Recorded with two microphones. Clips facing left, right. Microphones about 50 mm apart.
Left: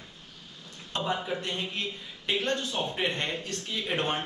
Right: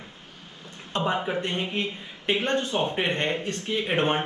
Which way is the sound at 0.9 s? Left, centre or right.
Right.